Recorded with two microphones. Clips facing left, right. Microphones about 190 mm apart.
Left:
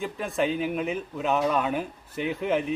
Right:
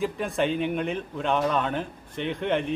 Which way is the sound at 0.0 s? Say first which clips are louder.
Right 1 dB; centre (ahead or behind).